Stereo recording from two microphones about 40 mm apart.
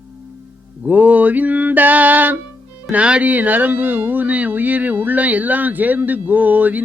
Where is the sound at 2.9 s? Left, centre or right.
Right.